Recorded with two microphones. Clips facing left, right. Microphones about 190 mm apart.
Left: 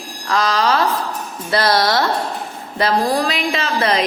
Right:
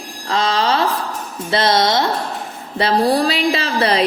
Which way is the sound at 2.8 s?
35° right (ahead or behind).